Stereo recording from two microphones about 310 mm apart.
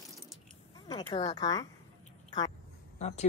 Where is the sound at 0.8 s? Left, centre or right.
Centre.